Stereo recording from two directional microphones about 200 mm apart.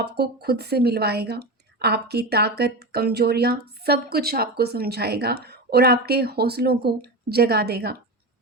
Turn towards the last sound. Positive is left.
turn(degrees=-55)  # may be behind; listen again after turning